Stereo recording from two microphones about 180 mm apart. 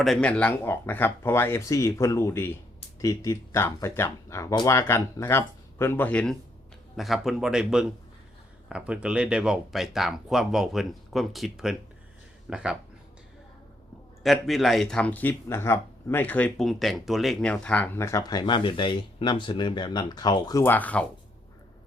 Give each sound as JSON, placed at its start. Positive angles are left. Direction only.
{"t": 0.0, "sound": "speech", "side_deg": 5}
{"t": 14.3, "sound": "speech", "side_deg": 0}